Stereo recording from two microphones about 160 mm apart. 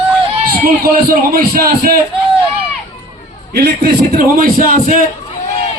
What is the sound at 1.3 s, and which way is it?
Speech, 75° right (ahead or behind).